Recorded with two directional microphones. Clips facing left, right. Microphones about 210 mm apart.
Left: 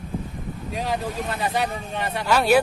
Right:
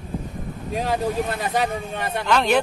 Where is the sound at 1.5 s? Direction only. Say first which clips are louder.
Right 2 dB; 45° right (ahead or behind).